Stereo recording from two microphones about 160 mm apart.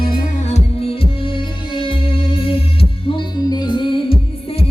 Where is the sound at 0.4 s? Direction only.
40° left (ahead or behind).